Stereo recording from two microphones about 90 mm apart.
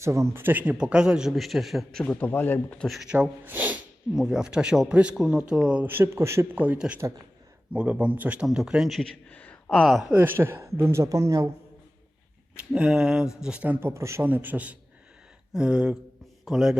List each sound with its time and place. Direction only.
0.0 s a man's voice: 35° right (ahead or behind); by 2.0 s centre (ahead or behind)
2.0 s speech: 20° left (ahead or behind)
2.8 s speech: centre (ahead or behind)
3.1 s speech: 20° right (ahead or behind)
4.1 s a man's voice: 5° right (ahead or behind)
5.8 s speech: 25° right (ahead or behind)
6.7 s a man's voice: 10° right (ahead or behind)
9.3 s a sound: 15° left (ahead or behind)
9.7 s speech: centre (ahead or behind)
10.2 s speech: 25° right (ahead or behind)
12.7 s a man's voice: 10° right (ahead or behind)
13.7 s a man's voice: 30° right (ahead or behind); by 16.7 s 5° right (ahead or behind)